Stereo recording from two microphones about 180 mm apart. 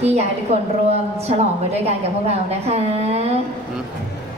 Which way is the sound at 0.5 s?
35° right (ahead or behind).